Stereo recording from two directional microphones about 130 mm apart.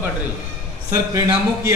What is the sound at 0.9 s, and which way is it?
Speech, 25° right (ahead or behind).